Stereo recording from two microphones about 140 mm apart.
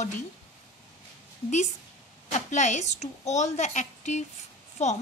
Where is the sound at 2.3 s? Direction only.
55° left (ahead or behind).